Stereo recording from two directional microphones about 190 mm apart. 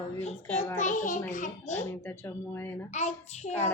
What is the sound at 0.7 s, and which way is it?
A child's voice, 40° left (ahead or behind).